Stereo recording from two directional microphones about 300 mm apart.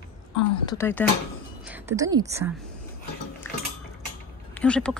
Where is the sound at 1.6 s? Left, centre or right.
Centre.